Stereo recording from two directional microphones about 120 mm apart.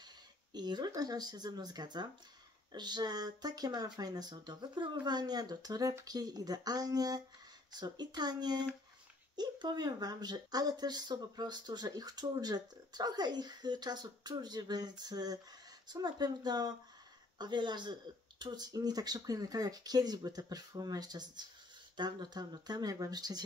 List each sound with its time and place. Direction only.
0.5 s speech: 35° right (ahead or behind)